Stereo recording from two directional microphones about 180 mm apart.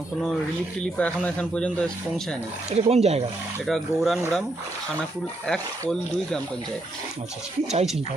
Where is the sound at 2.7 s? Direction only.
35° right (ahead or behind).